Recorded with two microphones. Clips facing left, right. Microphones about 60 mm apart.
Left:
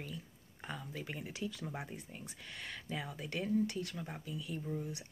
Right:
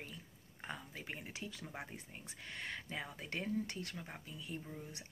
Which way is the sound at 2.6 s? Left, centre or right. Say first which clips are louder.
Left 2 dB; right.